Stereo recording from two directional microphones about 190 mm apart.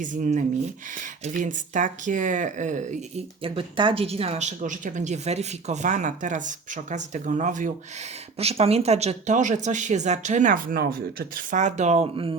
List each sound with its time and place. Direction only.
0.0 s speech: 40° right (ahead or behind)